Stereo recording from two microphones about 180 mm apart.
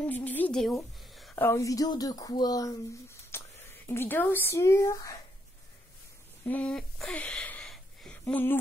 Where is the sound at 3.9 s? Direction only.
10° left (ahead or behind).